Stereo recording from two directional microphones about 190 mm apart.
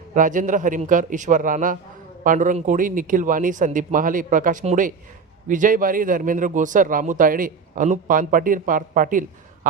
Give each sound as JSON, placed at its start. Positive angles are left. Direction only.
{"t": 0.1, "sound": "a man's voice", "side_deg": -45}